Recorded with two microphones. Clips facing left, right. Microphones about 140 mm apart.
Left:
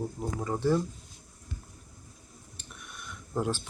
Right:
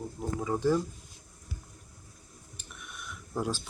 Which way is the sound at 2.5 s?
Centre (ahead or behind).